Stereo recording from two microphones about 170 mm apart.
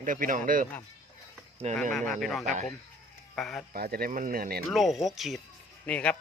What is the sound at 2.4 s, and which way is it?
Speech, 45° right (ahead or behind).